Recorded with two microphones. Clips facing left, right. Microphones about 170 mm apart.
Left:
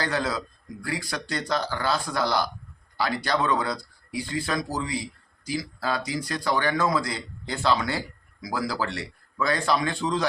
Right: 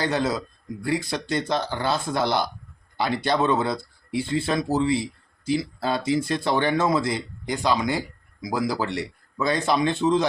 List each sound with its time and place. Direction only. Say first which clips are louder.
0.0 s speech: right 3 dB; 20° right (ahead or behind)